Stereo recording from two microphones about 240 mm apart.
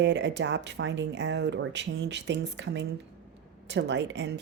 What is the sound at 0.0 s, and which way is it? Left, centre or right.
Speech, right.